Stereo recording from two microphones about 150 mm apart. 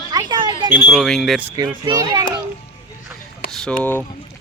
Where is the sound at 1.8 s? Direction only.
25° right (ahead or behind).